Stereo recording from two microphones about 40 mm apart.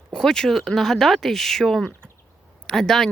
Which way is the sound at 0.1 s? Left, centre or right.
Centre.